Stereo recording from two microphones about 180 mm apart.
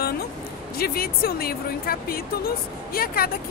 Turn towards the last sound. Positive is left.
turn(degrees=55)  # may be behind; listen again after turning